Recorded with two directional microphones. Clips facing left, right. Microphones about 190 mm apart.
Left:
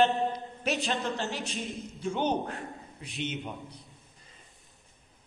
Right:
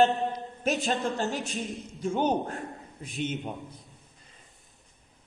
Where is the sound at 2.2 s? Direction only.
40° right (ahead or behind).